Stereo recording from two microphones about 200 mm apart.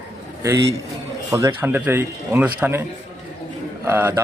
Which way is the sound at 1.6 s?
10° right (ahead or behind).